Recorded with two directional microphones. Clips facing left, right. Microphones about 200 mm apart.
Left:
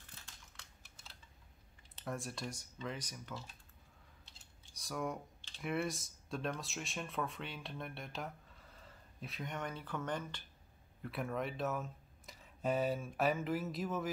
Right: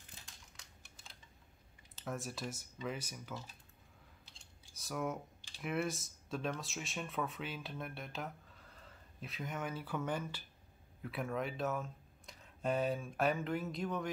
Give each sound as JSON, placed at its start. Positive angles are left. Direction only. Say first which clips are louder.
{"t": 2.0, "sound": "speech", "louder": "even", "side_deg": 0}
{"t": 4.4, "sound": "cutlery", "louder": "right 1 dB", "side_deg": -5}
{"t": 5.6, "sound": "speech", "louder": "even", "side_deg": 0}